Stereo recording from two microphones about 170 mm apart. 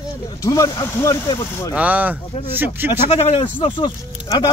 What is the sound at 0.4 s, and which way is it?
Speech, 20° left (ahead or behind).